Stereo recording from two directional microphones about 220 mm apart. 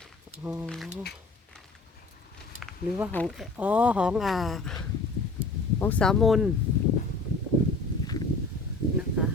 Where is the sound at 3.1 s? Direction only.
Centre (ahead or behind).